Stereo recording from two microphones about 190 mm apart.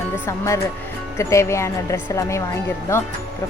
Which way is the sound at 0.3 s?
15° left (ahead or behind).